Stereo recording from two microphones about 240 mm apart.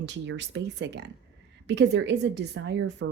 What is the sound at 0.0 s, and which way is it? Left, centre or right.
A woman's voice, right.